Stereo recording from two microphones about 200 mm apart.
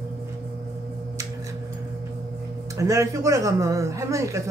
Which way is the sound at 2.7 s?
15° right (ahead or behind).